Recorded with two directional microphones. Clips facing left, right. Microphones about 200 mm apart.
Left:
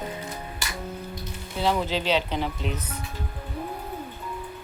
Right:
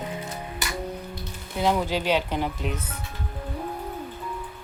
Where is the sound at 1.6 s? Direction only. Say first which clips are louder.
Right 1 dB; 10° right (ahead or behind).